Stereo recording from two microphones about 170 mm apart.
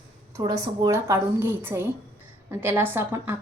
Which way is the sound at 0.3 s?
20° right (ahead or behind).